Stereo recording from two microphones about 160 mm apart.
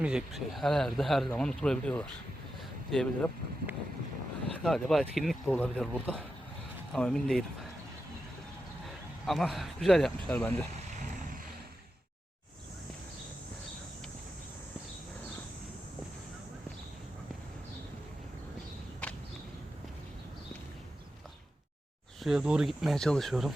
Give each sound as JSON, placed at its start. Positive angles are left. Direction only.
{"t": 0.0, "sound": "speech", "side_deg": -5}
{"t": 4.6, "sound": "speech", "side_deg": 0}
{"t": 6.9, "sound": "speech", "side_deg": 5}
{"t": 9.2, "sound": "speech", "side_deg": 0}
{"t": 10.8, "sound": "vehicle", "side_deg": -55}
{"t": 22.2, "sound": "speech", "side_deg": -5}